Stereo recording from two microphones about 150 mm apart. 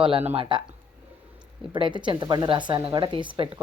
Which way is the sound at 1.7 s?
35° right (ahead or behind).